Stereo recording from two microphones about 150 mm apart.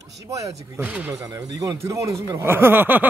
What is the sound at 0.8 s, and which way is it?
Speech, 10° right (ahead or behind).